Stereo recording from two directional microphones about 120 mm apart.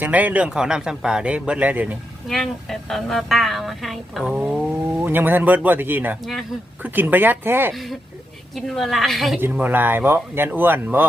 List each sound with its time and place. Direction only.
0.0 s speech: 15° right (ahead or behind)
2.2 s speech: centre (ahead or behind); by 7.7 s 20° right (ahead or behind)
7.7 s speech: centre (ahead or behind)
9.4 s speech: 15° right (ahead or behind)